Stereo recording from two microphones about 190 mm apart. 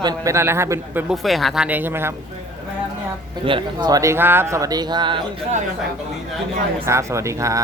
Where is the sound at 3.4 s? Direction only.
25° right (ahead or behind).